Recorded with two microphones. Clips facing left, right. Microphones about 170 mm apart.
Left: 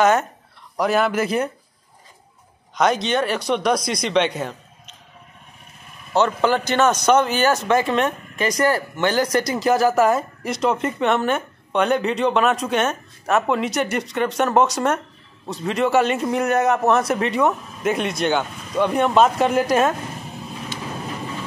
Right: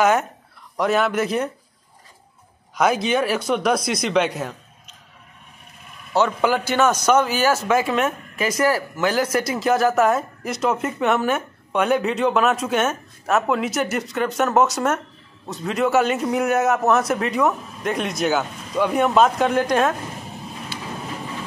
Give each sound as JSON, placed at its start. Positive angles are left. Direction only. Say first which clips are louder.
{"t": 0.0, "sound": "speech", "louder": "left 1 dB", "side_deg": -10}
{"t": 0.7, "sound": "a man's voice", "louder": "even", "side_deg": 0}
{"t": 2.7, "sound": "a man's voice", "louder": "even", "side_deg": -5}
{"t": 6.1, "sound": "a man's voice", "louder": "left 1 dB", "side_deg": -5}